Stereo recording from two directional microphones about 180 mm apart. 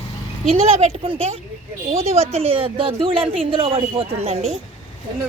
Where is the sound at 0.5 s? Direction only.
35° right (ahead or behind).